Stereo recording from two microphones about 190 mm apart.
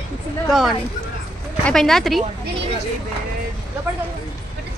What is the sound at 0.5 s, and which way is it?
Speech, centre (ahead or behind).